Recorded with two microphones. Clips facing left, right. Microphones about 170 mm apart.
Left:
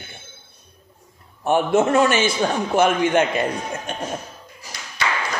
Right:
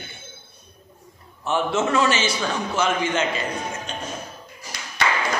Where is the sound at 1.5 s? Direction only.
55° left (ahead or behind).